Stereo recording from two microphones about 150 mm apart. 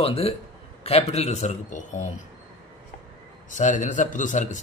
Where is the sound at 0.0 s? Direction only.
40° left (ahead or behind).